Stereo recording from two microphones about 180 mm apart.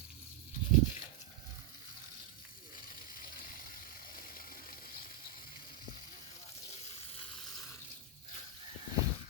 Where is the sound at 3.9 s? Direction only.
55° left (ahead or behind).